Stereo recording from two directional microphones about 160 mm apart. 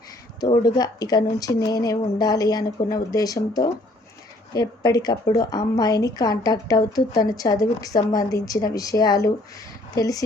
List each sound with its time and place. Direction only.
0.3 s a woman's voice: 25° left (ahead or behind)
4.5 s a woman's voice: 20° left (ahead or behind)